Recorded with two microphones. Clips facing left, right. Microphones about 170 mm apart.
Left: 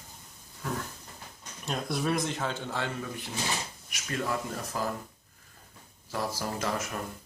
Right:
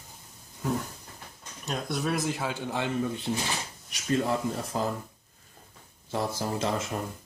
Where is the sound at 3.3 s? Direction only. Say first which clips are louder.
Right 6 dB; 40° right (ahead or behind).